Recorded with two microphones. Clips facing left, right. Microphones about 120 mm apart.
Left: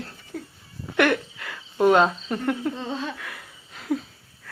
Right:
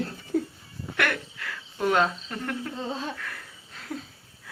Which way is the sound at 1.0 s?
20° left (ahead or behind).